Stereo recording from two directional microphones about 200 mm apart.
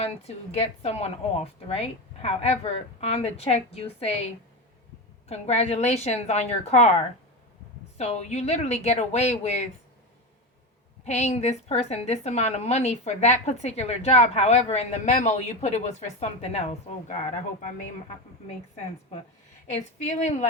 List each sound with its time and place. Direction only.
0.0 s a woman's voice: 30° left (ahead or behind)
5.3 s a woman's voice: 30° left (ahead or behind)
7.9 s a woman's voice: 35° left (ahead or behind)
11.0 s a woman's voice: 35° left (ahead or behind)
19.7 s a woman's voice: 35° left (ahead or behind)